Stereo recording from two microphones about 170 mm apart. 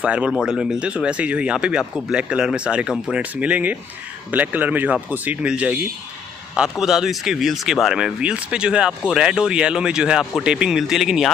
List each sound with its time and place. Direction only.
0.0 s speech: 5° right (ahead or behind)